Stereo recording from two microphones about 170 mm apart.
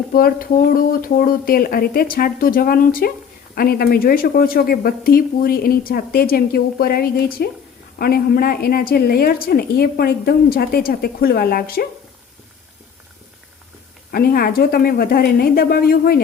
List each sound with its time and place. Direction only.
0.1 s speech: 60° left (ahead or behind)
14.1 s speech: 60° left (ahead or behind)